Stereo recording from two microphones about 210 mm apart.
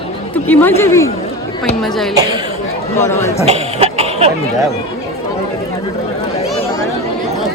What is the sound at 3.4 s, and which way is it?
Cough, 30° right (ahead or behind).